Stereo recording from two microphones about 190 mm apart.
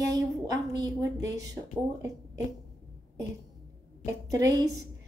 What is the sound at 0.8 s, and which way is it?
Speech, 20° right (ahead or behind).